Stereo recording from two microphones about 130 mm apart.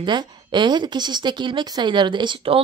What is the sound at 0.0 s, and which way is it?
Speech, 35° right (ahead or behind).